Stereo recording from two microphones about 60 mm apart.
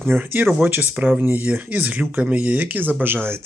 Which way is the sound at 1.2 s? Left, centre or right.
Right.